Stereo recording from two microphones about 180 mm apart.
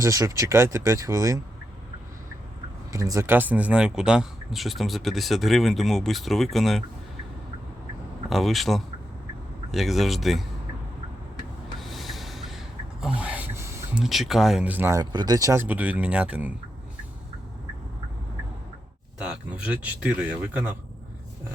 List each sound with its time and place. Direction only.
0.0 s speech: 15° right (ahead or behind)
2.9 s speech: 15° right (ahead or behind); by 6.8 s centre (ahead or behind)
8.3 s speech: centre (ahead or behind)
11.8 s a sound: centre (ahead or behind)
14.0 s speech: centre (ahead or behind)
19.2 s speech: 5° right (ahead or behind)